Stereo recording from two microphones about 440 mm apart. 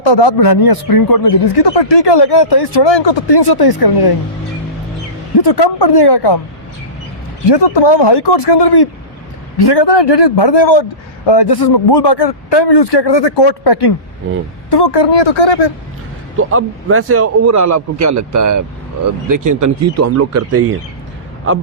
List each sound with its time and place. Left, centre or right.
0.0 s a man's voice: left
5.4 s a man's voice: left
7.5 s a man's voice: left
16.4 s a man's voice: right